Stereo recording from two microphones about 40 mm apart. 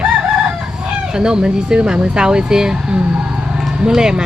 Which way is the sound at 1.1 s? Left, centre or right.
Centre.